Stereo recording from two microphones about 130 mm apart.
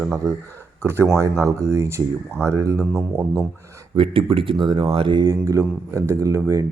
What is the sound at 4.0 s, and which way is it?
Speech, 45° right (ahead or behind).